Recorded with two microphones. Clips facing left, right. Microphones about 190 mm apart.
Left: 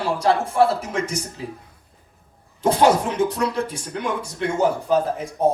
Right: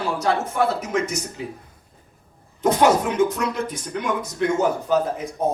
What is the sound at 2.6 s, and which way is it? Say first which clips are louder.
Speech: even; 30° left (ahead or behind).